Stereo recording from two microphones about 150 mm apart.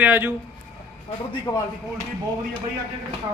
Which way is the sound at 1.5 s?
25° left (ahead or behind).